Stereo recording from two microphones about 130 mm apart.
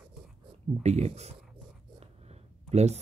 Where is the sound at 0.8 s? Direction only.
55° right (ahead or behind).